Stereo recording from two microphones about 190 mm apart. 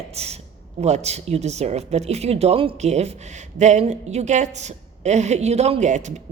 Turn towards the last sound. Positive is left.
turn(degrees=-40)  # may be behind; listen again after turning